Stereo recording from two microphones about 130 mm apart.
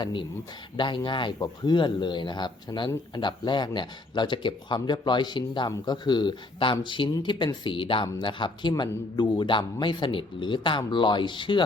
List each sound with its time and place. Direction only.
0.0 s speech: 40° left (ahead or behind)